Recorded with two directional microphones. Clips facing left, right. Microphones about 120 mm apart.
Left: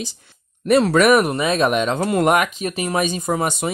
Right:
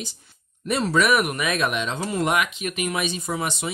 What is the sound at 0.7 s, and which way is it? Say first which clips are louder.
Speech: left 7 dB; 60° left (ahead or behind).